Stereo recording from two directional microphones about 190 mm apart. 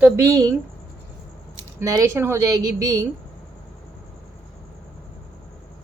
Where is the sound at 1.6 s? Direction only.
15° right (ahead or behind).